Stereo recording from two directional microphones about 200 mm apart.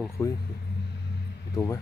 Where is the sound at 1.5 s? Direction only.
15° left (ahead or behind).